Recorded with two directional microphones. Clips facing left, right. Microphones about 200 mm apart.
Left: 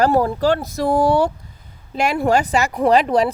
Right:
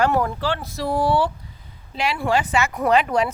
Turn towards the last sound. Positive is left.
turn(degrees=35)  # may be behind; listen again after turning